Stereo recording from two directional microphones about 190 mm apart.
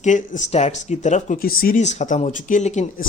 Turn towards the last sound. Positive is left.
turn(degrees=40)  # may be behind; listen again after turning